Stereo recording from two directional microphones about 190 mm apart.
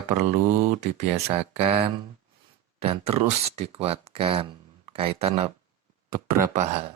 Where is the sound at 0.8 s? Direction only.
35° right (ahead or behind).